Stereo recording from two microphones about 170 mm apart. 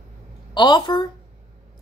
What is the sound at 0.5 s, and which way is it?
Speech, 25° left (ahead or behind).